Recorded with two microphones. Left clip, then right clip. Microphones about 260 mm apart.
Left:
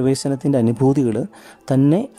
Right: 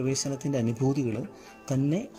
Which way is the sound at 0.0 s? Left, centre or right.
Left.